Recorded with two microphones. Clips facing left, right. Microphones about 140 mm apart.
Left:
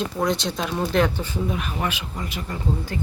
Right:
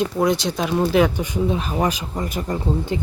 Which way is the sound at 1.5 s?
35° right (ahead or behind).